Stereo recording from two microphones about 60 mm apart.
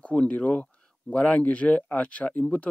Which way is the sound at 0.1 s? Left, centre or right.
Left.